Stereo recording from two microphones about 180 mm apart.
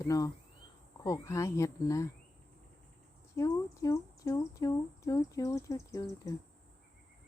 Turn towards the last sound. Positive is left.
turn(degrees=20)  # may be behind; listen again after turning